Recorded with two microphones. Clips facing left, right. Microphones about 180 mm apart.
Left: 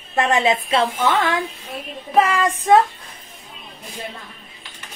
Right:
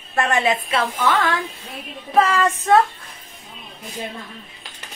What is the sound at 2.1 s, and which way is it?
Child singing, 15° left (ahead or behind).